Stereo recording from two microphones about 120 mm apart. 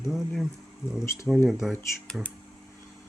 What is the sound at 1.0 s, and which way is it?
Speech, 25° left (ahead or behind).